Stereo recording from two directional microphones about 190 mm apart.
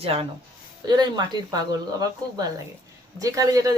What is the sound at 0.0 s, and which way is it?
Speech, 30° right (ahead or behind).